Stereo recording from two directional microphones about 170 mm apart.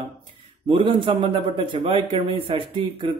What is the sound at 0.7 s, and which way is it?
Speech, 30° right (ahead or behind).